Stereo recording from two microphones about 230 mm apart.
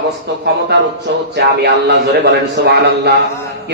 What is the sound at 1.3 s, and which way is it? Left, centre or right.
A man's voice, right.